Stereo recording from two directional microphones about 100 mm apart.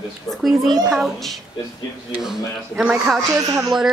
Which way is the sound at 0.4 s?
Centre (ahead or behind).